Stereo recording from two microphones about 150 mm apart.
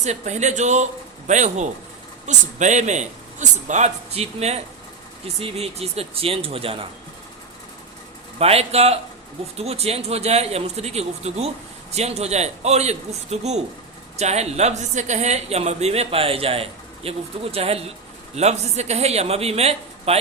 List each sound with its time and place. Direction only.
0.0 s speech: 50° right (ahead or behind)
8.4 s speech: 45° right (ahead or behind)